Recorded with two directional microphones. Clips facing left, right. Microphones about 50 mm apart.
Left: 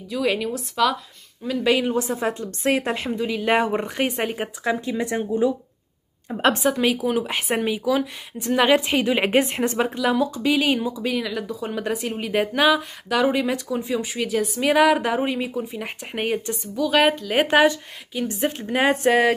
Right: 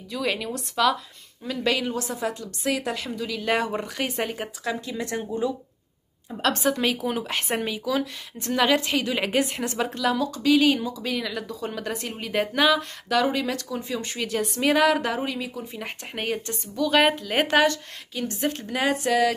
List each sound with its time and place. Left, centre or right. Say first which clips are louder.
0.1 s speech: left 4 dB; centre
1.7 s a woman's voice: left 5 dB; left
6.6 s speech: left 3 dB; centre
8.6 s a woman's voice: left 4 dB; left
15.7 s speech: left 3 dB; centre
17.5 s a woman's voice: left 3 dB; centre; by 19.3 s left